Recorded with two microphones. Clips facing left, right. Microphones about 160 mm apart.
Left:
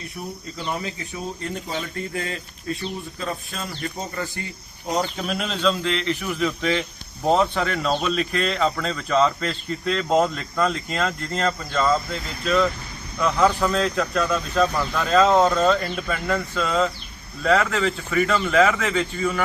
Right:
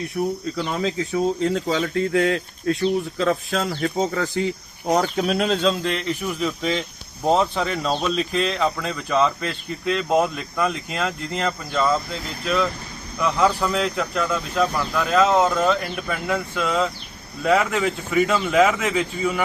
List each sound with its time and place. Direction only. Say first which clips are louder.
0.2 s speech: right 11 dB; 50° right (ahead or behind)
0.5 s speech: right 5 dB; 85° right
3.2 s speech: right 9 dB; 90° right
4.9 s speech: right 5 dB; 60° right (ahead or behind)
5.4 s speech: right 1 dB; 40° right (ahead or behind)
6.2 s speech: even; centre (ahead or behind)
13.1 s speech: even; 10° right (ahead or behind)